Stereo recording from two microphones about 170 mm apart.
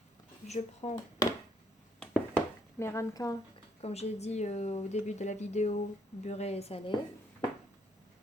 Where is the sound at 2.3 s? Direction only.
15° left (ahead or behind).